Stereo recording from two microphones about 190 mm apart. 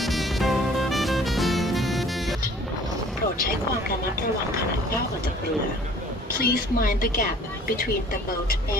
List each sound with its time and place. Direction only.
0.0 s music: centre (ahead or behind)
6.4 s a woman's voice: 50° left (ahead or behind)